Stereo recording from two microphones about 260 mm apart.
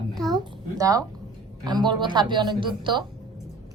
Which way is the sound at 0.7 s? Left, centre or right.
Centre.